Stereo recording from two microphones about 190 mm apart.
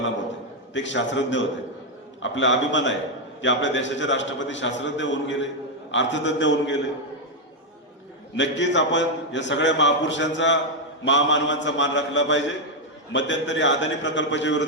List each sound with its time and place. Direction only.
0.7 s a man's voice: 75° left (ahead or behind)
8.4 s a man's voice: 70° left (ahead or behind)